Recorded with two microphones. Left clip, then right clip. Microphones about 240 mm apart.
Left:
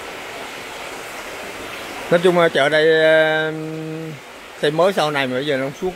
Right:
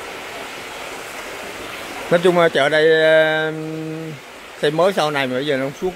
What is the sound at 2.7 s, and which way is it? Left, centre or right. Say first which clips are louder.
Speech: right 1 dB; centre.